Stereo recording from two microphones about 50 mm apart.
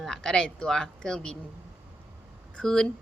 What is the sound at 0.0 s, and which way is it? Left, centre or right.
Speech, centre.